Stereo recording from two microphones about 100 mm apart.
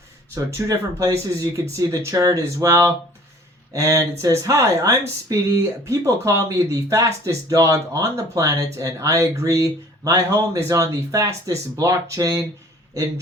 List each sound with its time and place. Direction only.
0.3 s speech: 35° right (ahead or behind)